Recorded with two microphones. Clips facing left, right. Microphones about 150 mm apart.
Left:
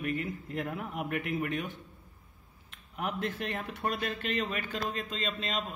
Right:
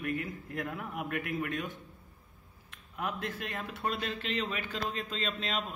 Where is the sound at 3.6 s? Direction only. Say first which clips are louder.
Right 2 dB; 15° left (ahead or behind).